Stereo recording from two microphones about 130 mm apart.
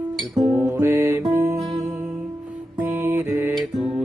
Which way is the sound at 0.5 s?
20° right (ahead or behind).